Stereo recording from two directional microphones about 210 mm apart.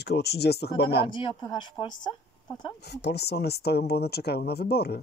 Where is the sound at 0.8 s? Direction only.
25° left (ahead or behind).